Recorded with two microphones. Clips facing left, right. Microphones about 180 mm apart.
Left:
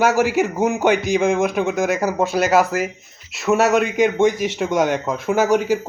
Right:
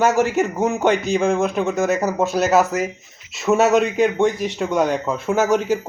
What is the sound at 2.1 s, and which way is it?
A man's voice, centre (ahead or behind).